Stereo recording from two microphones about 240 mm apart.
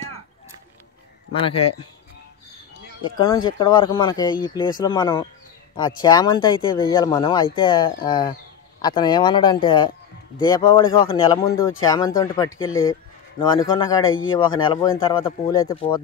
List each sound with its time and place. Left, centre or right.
1.4 s speech: left
3.5 s speech: centre
12.5 s speech: left
13.4 s speech: centre
14.0 s speech: left
14.6 s speech: centre